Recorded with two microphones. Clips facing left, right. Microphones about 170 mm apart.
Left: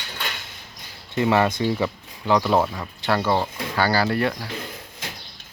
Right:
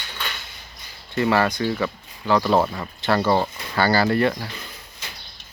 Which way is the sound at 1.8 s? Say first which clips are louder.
Left 1 dB; 20° left (ahead or behind).